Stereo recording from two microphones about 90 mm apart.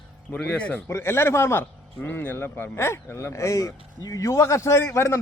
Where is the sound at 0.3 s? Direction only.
20° left (ahead or behind).